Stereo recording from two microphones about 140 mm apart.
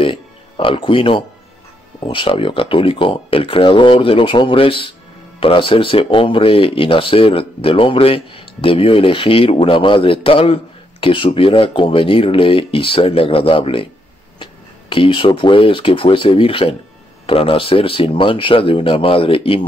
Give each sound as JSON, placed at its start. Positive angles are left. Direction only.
{"t": 0.0, "sound": "music", "side_deg": 40}
{"t": 2.0, "sound": "speech", "side_deg": 40}